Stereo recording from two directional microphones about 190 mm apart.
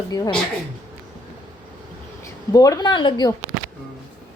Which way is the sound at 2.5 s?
20° left (ahead or behind).